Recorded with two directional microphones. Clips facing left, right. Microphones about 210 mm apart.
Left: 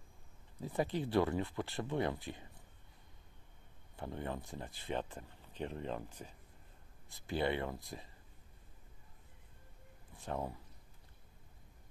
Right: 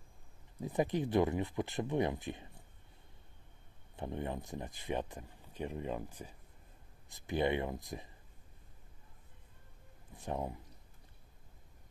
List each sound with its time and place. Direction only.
0.6 s speech: 15° right (ahead or behind)
3.9 s speech: 20° right (ahead or behind)
10.1 s speech: 20° right (ahead or behind)